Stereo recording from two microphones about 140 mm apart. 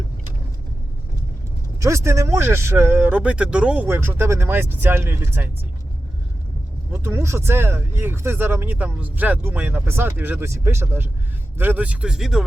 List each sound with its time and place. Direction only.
1.8 s speech: 20° right (ahead or behind)
6.9 s speech: 20° right (ahead or behind)